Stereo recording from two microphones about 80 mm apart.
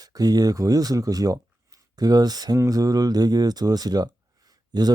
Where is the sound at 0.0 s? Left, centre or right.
Right.